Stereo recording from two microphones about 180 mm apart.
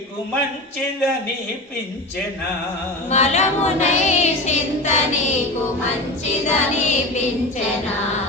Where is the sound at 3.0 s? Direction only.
40° left (ahead or behind).